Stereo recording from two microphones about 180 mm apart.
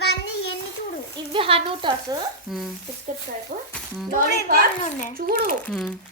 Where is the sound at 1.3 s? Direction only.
30° right (ahead or behind).